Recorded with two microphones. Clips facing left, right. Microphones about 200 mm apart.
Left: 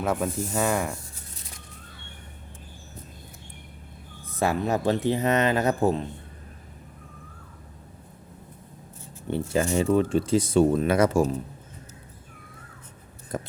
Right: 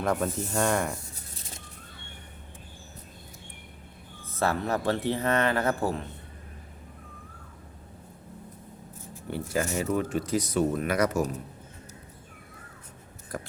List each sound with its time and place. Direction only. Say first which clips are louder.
0.0 s speech: left 1 dB; 5° left (ahead or behind)
4.4 s speech: left 3 dB; 15° left (ahead or behind)
9.2 s speech: left 4 dB; 25° left (ahead or behind)
13.3 s a sound: left 4 dB; 25° left (ahead or behind)